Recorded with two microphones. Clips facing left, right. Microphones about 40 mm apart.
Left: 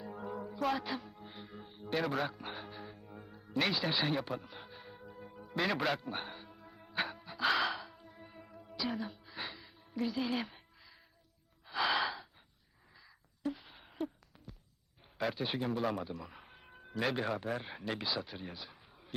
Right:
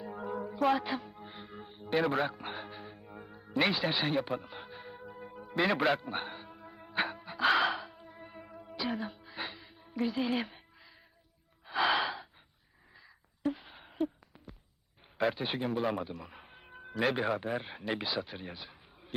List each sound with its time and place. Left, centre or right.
0.2 s whale vocalization: centre
0.7 s a man's voice: centre
1.1 s music: centre
4.4 s music: centre
5.6 s a man's voice: centre
6.4 s music: centre
7.9 s music: centre
9.9 s music: centre
11.8 s gasp: centre
13.6 s a sound: centre
15.2 s a man's voice: centre